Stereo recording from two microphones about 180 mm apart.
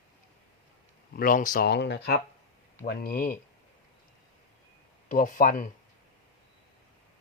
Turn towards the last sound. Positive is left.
turn(degrees=50)  # may be behind; listen again after turning